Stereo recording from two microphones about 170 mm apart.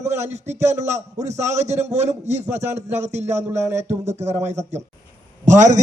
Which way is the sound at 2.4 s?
15° right (ahead or behind).